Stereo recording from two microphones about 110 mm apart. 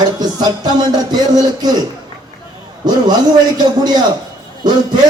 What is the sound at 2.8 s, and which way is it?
Music, 40° right (ahead or behind).